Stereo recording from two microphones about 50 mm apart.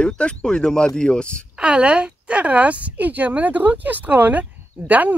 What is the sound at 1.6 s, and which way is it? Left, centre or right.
A woman's voice, right.